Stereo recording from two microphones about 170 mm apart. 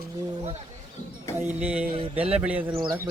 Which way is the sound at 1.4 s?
5° right (ahead or behind).